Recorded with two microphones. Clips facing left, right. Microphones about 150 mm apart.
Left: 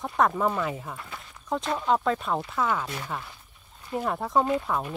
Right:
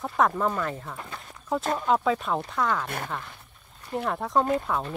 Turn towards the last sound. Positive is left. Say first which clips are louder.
# even
turn(degrees=5)  # may be behind; listen again after turning